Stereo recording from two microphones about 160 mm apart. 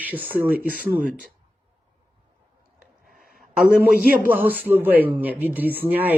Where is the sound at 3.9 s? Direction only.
65° left (ahead or behind).